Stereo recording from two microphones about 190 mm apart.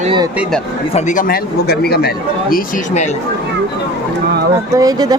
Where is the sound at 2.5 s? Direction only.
40° left (ahead or behind).